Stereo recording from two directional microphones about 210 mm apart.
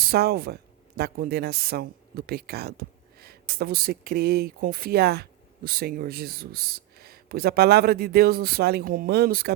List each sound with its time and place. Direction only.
0.0 s speech: 45° right (ahead or behind)